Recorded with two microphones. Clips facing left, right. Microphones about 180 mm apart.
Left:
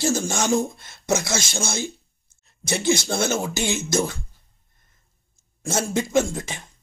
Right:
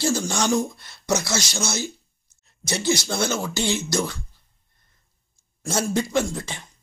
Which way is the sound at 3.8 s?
25° left (ahead or behind).